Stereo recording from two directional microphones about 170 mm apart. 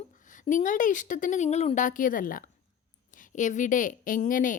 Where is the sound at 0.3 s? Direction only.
50° left (ahead or behind).